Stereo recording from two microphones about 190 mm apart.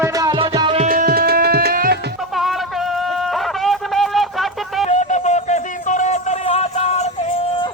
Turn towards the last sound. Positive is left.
turn(degrees=35)  # may be behind; listen again after turning